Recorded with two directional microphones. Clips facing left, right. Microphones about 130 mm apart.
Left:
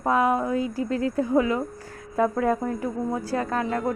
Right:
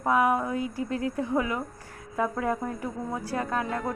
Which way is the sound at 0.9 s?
20° right (ahead or behind).